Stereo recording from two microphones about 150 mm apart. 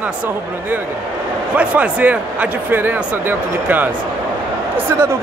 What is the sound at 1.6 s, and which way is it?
Speech, 10° right (ahead or behind).